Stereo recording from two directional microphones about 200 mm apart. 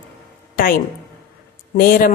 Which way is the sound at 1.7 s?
45° left (ahead or behind).